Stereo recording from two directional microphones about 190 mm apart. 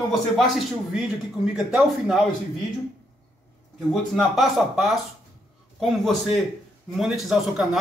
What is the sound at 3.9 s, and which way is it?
A man's voice, centre (ahead or behind).